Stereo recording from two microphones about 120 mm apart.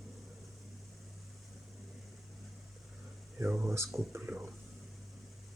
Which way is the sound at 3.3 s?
20° right (ahead or behind).